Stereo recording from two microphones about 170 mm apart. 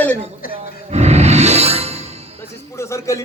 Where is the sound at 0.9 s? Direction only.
40° right (ahead or behind).